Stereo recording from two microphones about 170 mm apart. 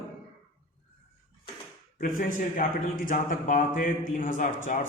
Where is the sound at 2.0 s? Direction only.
50° left (ahead or behind).